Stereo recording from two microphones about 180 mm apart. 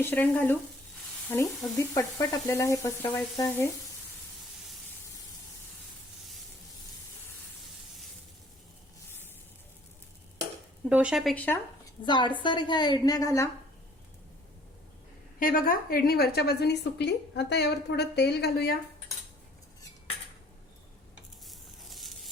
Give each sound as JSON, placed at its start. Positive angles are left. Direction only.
{"t": 0.0, "sound": "stir", "side_deg": 10}
{"t": 10.8, "sound": "speech", "side_deg": -5}
{"t": 12.0, "sound": "a woman's voice", "side_deg": 25}
{"t": 15.4, "sound": "a woman's voice", "side_deg": 50}
{"t": 21.4, "sound": "a sound", "side_deg": 0}